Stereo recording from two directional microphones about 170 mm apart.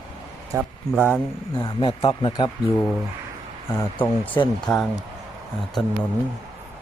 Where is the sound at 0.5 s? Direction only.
20° right (ahead or behind).